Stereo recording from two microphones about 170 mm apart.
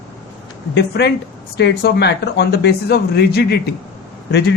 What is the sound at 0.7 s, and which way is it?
Speech, 85° left.